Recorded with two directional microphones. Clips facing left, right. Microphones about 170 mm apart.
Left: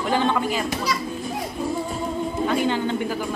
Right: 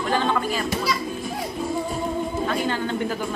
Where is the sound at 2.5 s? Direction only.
15° left (ahead or behind).